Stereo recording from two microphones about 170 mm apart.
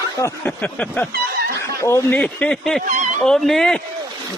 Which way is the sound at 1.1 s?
65° right (ahead or behind).